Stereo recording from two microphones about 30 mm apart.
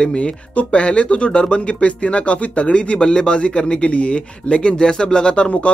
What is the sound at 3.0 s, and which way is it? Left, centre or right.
Speech, left.